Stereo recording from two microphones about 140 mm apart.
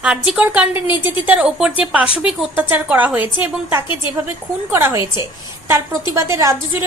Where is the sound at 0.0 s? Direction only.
10° right (ahead or behind).